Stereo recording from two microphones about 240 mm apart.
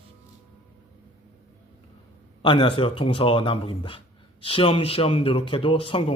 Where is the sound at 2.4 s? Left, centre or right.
Left.